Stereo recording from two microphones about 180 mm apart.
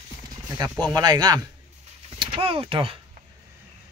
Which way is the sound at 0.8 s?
20° right (ahead or behind).